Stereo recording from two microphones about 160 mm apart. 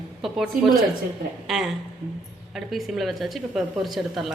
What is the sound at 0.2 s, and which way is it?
Speech, centre (ahead or behind).